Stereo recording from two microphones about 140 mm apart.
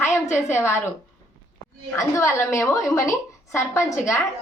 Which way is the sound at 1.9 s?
20° left (ahead or behind).